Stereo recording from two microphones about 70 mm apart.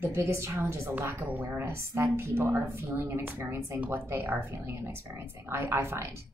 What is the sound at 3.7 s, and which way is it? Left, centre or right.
Speech, right.